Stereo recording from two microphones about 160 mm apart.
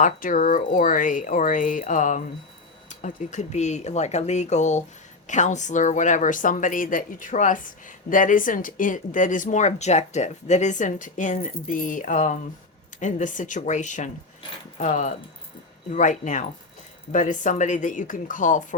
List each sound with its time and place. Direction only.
0.0 s speech: 60° left (ahead or behind)